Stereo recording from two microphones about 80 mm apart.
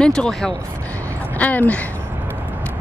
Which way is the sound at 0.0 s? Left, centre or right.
Centre.